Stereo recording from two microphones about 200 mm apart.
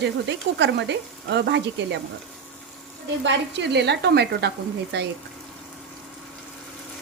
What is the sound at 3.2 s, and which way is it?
Speech, 60° right (ahead or behind).